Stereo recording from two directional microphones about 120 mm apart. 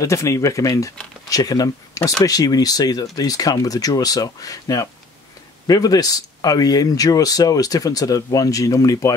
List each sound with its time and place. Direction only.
0.0 s speech: 25° left (ahead or behind)